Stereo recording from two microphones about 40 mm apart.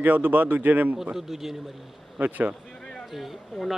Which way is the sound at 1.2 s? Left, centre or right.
Centre.